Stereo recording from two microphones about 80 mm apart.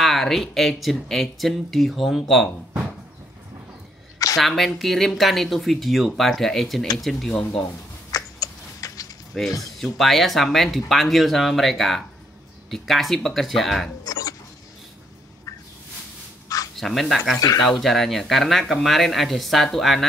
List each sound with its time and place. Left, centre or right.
0.0 s speech: centre
4.4 s speech: centre
8.1 s a sound: left
9.3 s speech: centre
14.0 s a sound: left
16.7 s speech: centre